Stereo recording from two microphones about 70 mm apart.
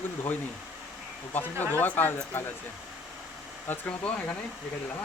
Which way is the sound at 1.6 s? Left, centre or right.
Left.